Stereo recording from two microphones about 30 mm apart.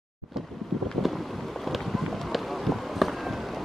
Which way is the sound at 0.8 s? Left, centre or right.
Centre.